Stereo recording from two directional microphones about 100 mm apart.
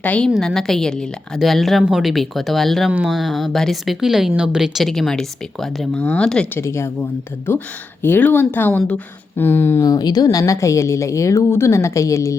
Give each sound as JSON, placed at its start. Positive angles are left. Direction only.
{"t": 0.0, "sound": "speech", "side_deg": 15}
{"t": 0.3, "sound": "a woman's voice", "side_deg": 5}
{"t": 6.5, "sound": "a woman's voice", "side_deg": 25}
{"t": 9.8, "sound": "a woman's voice", "side_deg": 40}